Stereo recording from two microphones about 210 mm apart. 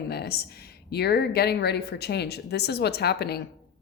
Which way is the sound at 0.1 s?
50° left (ahead or behind).